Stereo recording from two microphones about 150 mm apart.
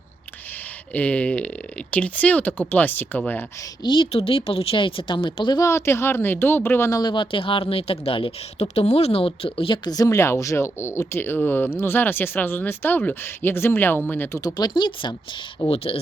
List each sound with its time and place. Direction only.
0.9 s speech: 10° left (ahead or behind)
3.8 s a woman's voice: 35° left (ahead or behind); by 7.0 s 15° left (ahead or behind)
7.0 s speech: 30° left (ahead or behind); by 14.4 s 15° left (ahead or behind)
14.4 s a woman's voice: 30° left (ahead or behind)